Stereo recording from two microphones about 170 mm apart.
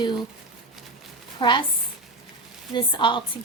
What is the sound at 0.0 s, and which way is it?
Speech, 25° left (ahead or behind).